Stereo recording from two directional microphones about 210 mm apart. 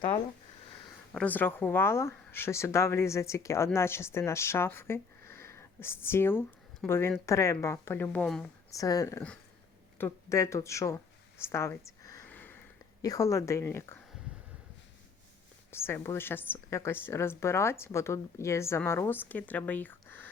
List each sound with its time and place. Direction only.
1.1 s speech: 5° left (ahead or behind)
8.7 s speech: 15° left (ahead or behind)
15.7 s speech: 10° left (ahead or behind)